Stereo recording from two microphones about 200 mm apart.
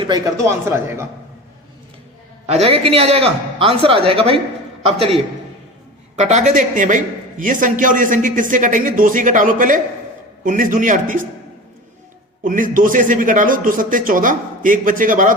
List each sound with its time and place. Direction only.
0.0 s speech: 20° right (ahead or behind)
2.5 s a man's voice: 30° right (ahead or behind)
12.4 s a man's voice: 40° right (ahead or behind)